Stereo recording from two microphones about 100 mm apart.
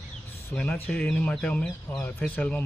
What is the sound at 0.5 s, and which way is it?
Speech, 15° left (ahead or behind).